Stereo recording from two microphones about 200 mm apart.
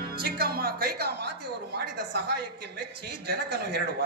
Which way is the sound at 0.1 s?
50° right (ahead or behind).